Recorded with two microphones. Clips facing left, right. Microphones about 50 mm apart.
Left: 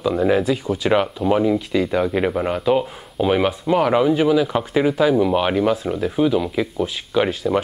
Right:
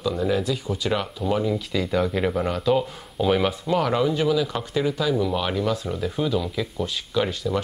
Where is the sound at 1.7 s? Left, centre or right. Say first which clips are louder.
Left 4 dB; centre; by 5.9 s left.